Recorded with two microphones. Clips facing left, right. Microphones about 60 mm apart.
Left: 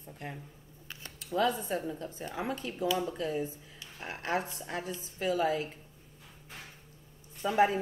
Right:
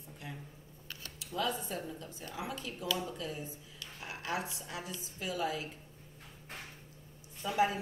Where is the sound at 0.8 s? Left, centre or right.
Left.